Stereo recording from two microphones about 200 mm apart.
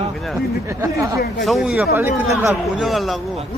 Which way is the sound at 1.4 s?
Centre (ahead or behind).